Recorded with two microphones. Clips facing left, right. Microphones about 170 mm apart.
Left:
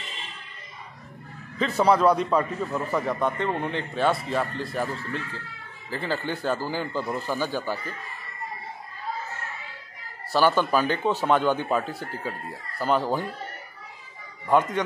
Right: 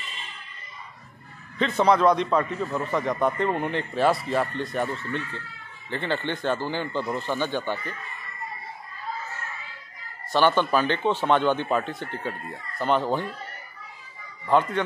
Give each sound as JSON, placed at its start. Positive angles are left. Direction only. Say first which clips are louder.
{"t": 1.6, "sound": "a man's voice", "louder": "even", "side_deg": 10}
{"t": 10.3, "sound": "a man's voice", "louder": "even", "side_deg": 5}